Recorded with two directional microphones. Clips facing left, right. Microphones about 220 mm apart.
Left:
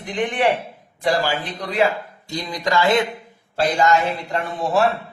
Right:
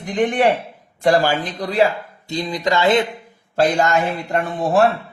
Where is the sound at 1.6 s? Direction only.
35° right (ahead or behind).